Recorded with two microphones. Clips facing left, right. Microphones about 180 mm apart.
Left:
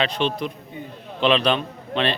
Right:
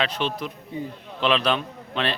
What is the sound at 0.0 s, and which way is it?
A man's voice, 5° right (ahead or behind).